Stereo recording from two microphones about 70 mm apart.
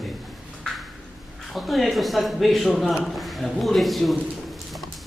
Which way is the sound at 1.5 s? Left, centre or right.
Centre.